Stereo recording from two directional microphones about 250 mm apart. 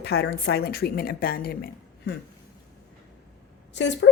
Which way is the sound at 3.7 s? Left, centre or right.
Left.